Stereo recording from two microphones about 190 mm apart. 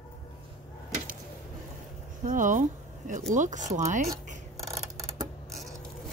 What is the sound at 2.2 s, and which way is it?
Speech, 45° right (ahead or behind).